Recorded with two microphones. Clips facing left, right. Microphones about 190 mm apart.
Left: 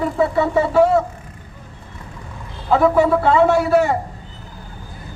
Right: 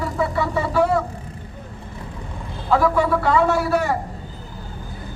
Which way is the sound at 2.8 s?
25° left (ahead or behind).